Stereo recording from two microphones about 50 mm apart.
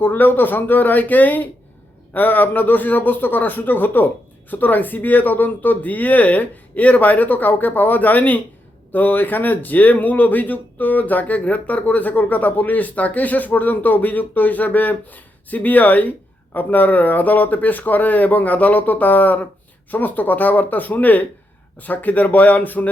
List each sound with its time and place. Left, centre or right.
0.0 s speech: left